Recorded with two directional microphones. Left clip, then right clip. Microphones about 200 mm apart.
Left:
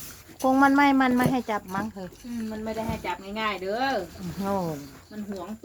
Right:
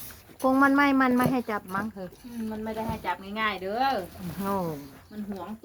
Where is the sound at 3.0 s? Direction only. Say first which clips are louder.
Right 1 dB; 25° right (ahead or behind).